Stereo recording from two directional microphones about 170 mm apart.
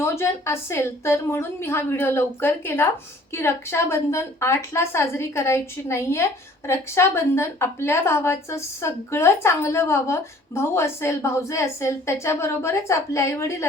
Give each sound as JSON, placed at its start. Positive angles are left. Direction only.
{"t": 0.0, "sound": "a woman's voice", "side_deg": 15}